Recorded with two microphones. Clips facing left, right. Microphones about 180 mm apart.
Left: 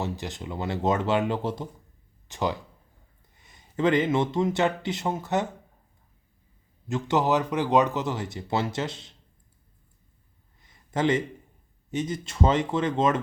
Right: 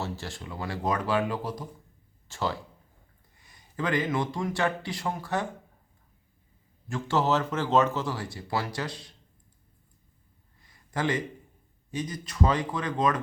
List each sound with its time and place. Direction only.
0.0 s speech: 20° left (ahead or behind)
6.8 s speech: 20° left (ahead or behind)
10.6 s a sound: 25° left (ahead or behind)
11.9 s speech: 25° left (ahead or behind)